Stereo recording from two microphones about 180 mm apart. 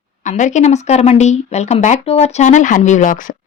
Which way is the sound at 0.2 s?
45° left (ahead or behind).